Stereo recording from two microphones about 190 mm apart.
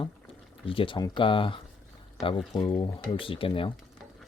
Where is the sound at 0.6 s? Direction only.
30° left (ahead or behind).